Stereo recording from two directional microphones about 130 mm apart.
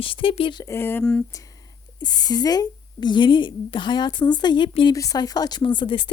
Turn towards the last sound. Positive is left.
turn(degrees=40)  # may be behind; listen again after turning